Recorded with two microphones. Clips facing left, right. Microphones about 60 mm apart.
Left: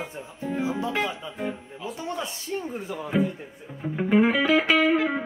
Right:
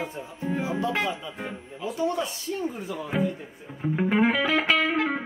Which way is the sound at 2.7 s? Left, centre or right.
Left.